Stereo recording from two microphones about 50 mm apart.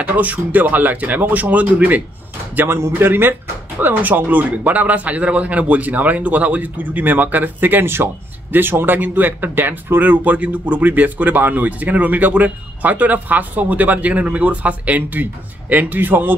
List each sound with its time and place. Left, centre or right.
0.0 s speech: right